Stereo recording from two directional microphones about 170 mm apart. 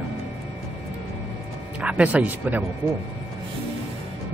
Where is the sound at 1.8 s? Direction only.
5° right (ahead or behind).